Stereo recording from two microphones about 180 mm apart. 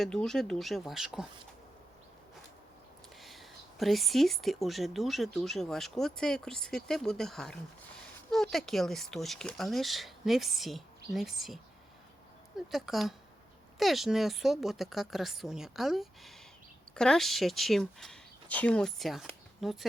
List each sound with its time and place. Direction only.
0.0 s a woman's voice: 5° left (ahead or behind)
3.2 s a woman's voice: centre (ahead or behind)